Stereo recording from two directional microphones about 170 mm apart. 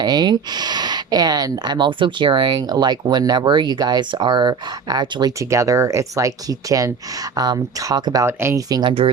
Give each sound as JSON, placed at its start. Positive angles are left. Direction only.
{"t": 0.0, "sound": "speech", "side_deg": -25}